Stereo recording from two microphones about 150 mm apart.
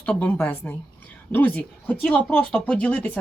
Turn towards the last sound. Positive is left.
turn(degrees=10)  # may be behind; listen again after turning